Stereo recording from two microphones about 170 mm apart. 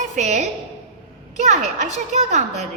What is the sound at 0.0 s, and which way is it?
A woman's voice, 45° right (ahead or behind).